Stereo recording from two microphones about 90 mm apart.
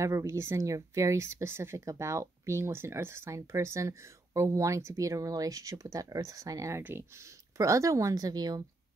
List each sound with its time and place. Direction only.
0.0 s speech: 35° right (ahead or behind)
6.8 s speech: 25° right (ahead or behind); by 8.6 s 45° right (ahead or behind)